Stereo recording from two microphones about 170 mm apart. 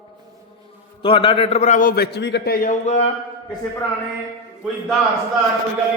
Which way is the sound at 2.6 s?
40° left (ahead or behind).